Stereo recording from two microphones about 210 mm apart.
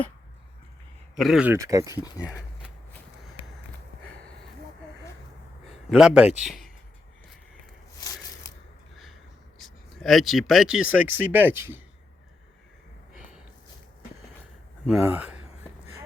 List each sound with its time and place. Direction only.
1.2 s speech: 5° right (ahead or behind)
5.9 s speech: 5° right (ahead or behind)
9.6 s speech: centre (ahead or behind)
15.0 s speech: 10° right (ahead or behind)